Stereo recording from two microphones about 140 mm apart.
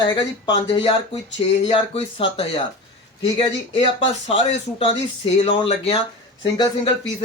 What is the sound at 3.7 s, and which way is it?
Speech, 45° left (ahead or behind).